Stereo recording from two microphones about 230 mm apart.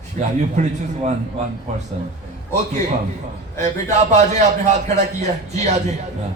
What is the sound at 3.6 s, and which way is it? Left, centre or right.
A man's voice, right.